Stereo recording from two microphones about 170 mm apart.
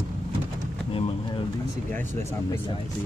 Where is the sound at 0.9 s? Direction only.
35° left (ahead or behind).